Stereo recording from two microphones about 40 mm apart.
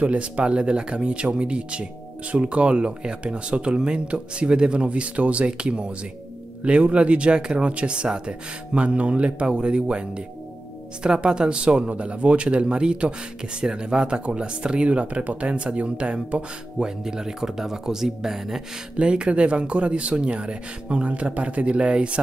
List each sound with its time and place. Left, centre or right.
0.0 s speech: right; by 18.6 s centre
18.9 s speech: right